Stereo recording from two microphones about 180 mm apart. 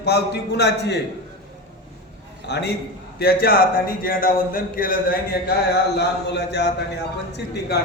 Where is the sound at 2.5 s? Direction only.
70° left (ahead or behind).